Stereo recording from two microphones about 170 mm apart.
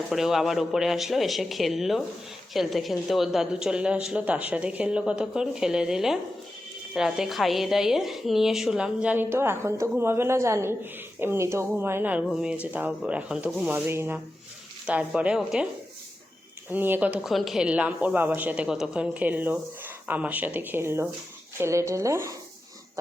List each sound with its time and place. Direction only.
0.1 s a woman's voice: centre (ahead or behind)
16.7 s speech: 10° right (ahead or behind)